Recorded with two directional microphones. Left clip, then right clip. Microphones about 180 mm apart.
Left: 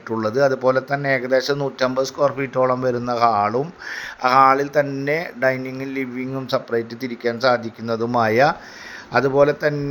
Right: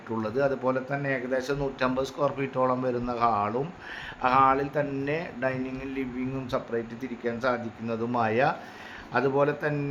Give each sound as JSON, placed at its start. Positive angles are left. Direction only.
{"t": 0.1, "sound": "speech", "side_deg": 25}